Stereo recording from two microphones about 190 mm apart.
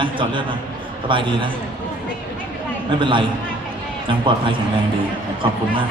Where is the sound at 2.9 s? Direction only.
25° right (ahead or behind).